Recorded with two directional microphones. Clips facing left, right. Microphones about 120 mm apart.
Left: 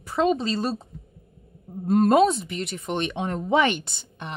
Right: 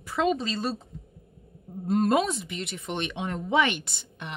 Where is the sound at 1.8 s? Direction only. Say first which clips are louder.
Left 4 dB; 45° left (ahead or behind).